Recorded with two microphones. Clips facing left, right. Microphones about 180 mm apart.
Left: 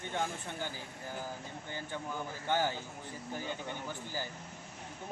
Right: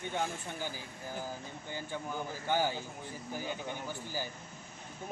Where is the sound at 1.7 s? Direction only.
10° right (ahead or behind).